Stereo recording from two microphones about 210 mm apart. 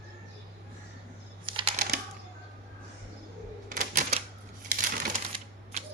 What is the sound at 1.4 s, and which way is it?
Typing, 25° right (ahead or behind).